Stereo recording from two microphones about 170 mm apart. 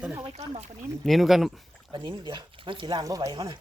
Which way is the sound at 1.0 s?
Centre (ahead or behind).